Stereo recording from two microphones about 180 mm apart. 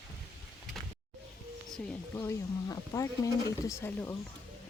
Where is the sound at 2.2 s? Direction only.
15° left (ahead or behind).